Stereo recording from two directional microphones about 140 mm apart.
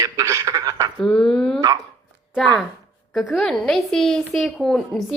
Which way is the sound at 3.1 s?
Centre (ahead or behind).